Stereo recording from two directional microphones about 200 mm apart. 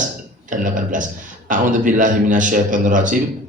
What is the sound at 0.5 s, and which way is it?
A man's voice, 40° right (ahead or behind).